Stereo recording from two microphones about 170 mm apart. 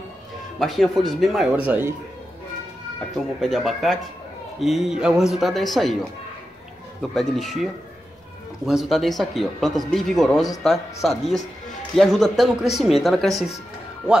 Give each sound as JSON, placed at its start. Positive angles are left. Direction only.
{"t": 0.6, "sound": "speech", "side_deg": 0}
{"t": 3.2, "sound": "speech", "side_deg": 0}
{"t": 7.0, "sound": "speech", "side_deg": 0}